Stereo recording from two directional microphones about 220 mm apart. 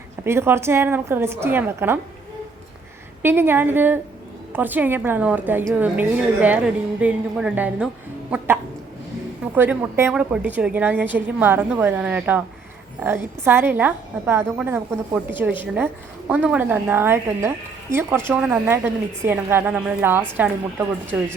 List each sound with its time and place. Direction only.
0.3 s a woman's voice: 10° right (ahead or behind)
3.2 s a woman's voice: 10° right (ahead or behind)
9.6 s a woman's voice: 10° right (ahead or behind)